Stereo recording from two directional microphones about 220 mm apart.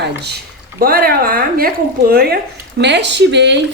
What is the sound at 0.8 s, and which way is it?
Speech, 40° right (ahead or behind).